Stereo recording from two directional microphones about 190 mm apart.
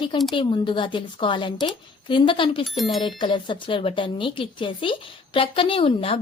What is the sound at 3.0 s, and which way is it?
Speech, 25° left (ahead or behind).